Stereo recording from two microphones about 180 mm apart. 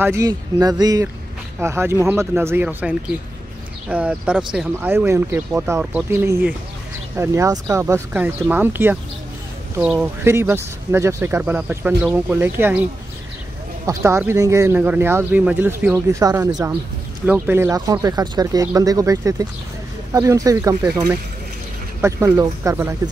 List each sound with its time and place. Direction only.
0.0 s speech: 15° right (ahead or behind)
13.8 s speech: 15° right (ahead or behind)